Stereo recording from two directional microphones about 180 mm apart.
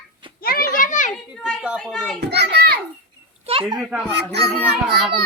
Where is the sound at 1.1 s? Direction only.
5° right (ahead or behind).